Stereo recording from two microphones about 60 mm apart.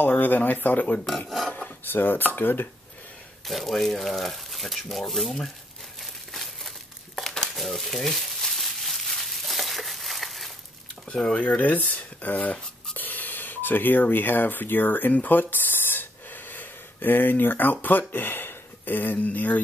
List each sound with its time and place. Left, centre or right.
0.0 s speech: left
1.0 s speech: centre
1.9 s dishes: left
3.4 s speech: centre
5.9 s crumpling: centre
11.1 s speech: centre